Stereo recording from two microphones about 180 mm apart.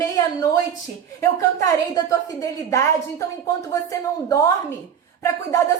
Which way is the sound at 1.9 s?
20° left (ahead or behind).